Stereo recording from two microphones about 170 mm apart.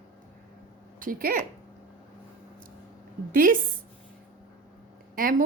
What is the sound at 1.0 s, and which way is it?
Speech, 55° right (ahead or behind).